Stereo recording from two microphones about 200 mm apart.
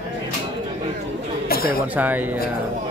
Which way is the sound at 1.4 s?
50° left (ahead or behind).